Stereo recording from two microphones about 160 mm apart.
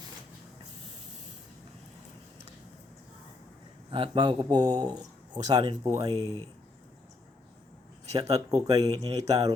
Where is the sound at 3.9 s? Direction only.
35° right (ahead or behind).